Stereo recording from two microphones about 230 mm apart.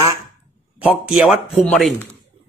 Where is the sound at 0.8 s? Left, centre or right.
Centre.